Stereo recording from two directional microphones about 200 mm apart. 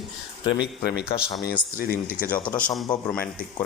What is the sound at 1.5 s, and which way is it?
Speech, 45° left (ahead or behind).